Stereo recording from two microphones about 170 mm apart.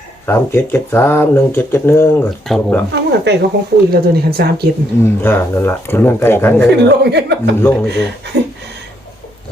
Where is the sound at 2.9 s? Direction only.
80° right.